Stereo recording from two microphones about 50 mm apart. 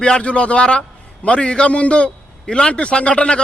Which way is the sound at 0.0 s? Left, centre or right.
Left.